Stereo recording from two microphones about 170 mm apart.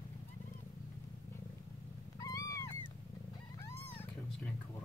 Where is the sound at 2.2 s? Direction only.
20° left (ahead or behind).